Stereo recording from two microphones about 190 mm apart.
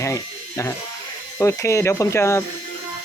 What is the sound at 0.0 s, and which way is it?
Electric shaver, 15° left (ahead or behind).